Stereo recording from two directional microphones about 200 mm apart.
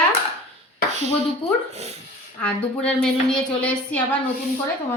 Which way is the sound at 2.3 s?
5° left (ahead or behind).